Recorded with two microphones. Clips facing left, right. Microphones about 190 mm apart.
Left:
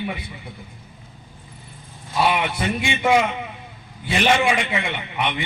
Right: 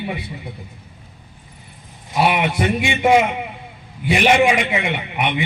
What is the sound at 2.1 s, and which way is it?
A man's voice, 20° right (ahead or behind).